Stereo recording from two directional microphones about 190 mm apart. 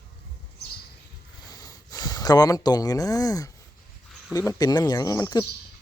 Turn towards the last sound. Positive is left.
turn(degrees=20)  # may be behind; listen again after turning